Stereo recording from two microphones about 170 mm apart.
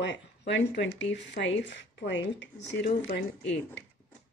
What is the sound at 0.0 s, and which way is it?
Speech, 90° left.